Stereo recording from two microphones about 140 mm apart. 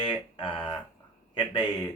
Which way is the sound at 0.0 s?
35° left (ahead or behind).